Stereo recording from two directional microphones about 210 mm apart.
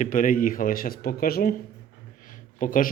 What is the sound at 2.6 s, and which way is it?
Speech, 40° left (ahead or behind).